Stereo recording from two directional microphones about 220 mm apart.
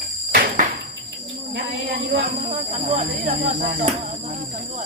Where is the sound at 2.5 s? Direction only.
30° right (ahead or behind).